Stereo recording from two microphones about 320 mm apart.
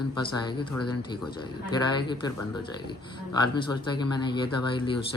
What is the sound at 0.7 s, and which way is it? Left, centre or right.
Speech, left.